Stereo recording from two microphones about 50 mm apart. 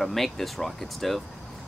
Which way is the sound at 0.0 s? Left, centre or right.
Centre.